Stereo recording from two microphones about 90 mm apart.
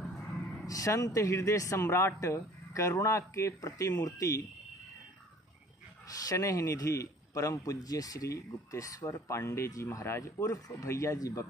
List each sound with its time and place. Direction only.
0.7 s a man's voice: 40° left (ahead or behind)
6.2 s a man's voice: 40° left (ahead or behind)